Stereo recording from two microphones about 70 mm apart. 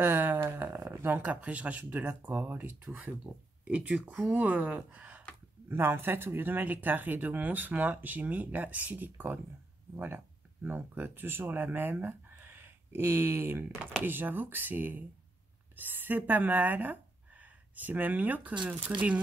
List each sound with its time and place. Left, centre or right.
0.0 s a sound: right
1.2 s speech: centre
5.7 s speech: right